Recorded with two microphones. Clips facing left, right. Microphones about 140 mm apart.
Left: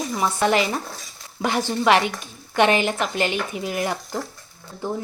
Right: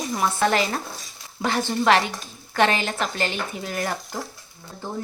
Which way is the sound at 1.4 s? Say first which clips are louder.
Left 1 dB; 10° left (ahead or behind).